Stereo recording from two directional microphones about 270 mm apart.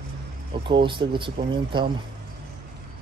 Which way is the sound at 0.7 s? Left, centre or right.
Centre.